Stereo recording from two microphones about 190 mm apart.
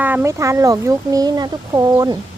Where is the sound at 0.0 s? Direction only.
10° right (ahead or behind).